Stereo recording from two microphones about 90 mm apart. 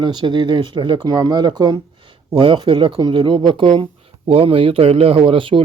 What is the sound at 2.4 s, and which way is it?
Speech, 65° right (ahead or behind).